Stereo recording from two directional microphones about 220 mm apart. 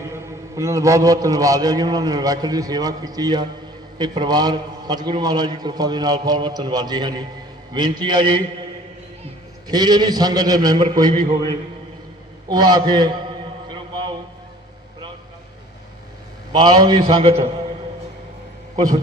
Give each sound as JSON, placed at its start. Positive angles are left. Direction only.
{"t": 0.0, "sound": "a man's voice", "side_deg": -10}
{"t": 9.6, "sound": "a man's voice", "side_deg": -20}
{"t": 12.5, "sound": "a sound", "side_deg": -20}
{"t": 16.5, "sound": "a man's voice", "side_deg": -20}